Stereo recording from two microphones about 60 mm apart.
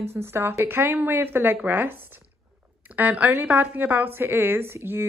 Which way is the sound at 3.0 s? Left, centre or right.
Right.